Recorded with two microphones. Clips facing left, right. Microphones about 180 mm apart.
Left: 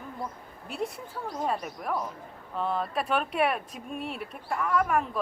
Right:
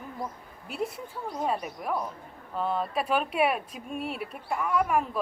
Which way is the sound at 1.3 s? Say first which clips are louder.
Right 1 dB; centre (ahead or behind).